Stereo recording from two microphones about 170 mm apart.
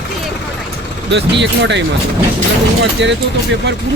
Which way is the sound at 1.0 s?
90° right.